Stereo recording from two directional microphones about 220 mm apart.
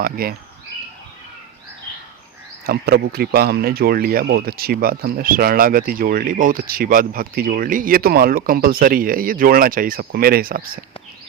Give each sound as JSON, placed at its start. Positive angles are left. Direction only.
{"t": 0.0, "sound": "speech", "side_deg": -45}
{"t": 2.6, "sound": "speech", "side_deg": -45}